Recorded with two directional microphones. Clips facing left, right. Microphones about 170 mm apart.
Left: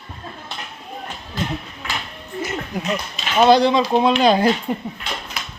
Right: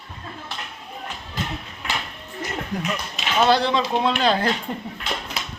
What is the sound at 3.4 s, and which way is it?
Speech, 15° left (ahead or behind).